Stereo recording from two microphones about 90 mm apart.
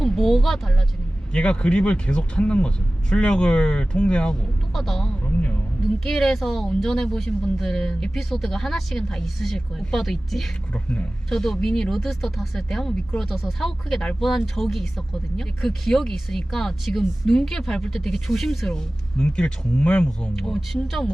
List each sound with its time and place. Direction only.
0.0 s speech: 5° left (ahead or behind)
5.2 s speech: 15° left (ahead or behind)
6.1 s speech: centre (ahead or behind)